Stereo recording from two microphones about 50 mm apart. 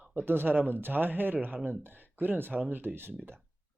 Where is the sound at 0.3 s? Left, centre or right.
Right.